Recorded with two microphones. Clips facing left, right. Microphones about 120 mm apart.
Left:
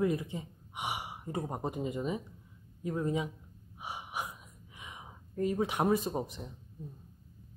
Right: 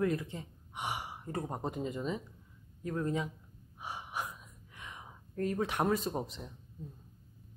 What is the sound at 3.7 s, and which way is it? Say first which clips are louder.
Gasp: left 1 dB; 10° left (ahead or behind).